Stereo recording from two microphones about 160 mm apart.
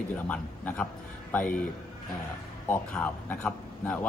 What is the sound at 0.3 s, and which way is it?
Speech, 10° left (ahead or behind).